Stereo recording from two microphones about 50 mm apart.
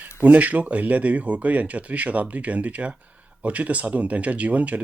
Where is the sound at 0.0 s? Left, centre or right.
Right.